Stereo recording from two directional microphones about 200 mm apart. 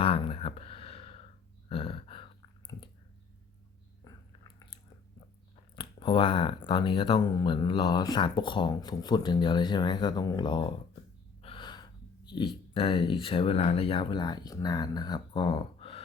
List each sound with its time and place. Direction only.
0.0 s a sound: 30° left (ahead or behind)
5.7 s speech: 25° left (ahead or behind)
11.4 s gasp: 25° left (ahead or behind)
12.7 s speech: 25° left (ahead or behind)